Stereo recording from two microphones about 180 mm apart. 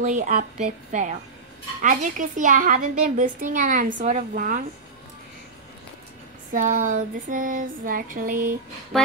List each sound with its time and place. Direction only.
0.0 s a woman's voice: 45° right (ahead or behind)
6.5 s a woman's voice: 45° right (ahead or behind)
8.9 s a sound: centre (ahead or behind)